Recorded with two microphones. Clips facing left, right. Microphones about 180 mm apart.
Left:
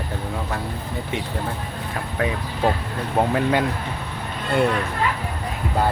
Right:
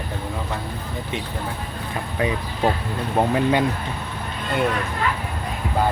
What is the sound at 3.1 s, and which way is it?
Speech, centre (ahead or behind).